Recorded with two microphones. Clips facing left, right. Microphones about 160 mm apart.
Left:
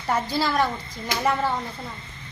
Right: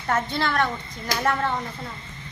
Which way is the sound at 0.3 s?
5° left (ahead or behind).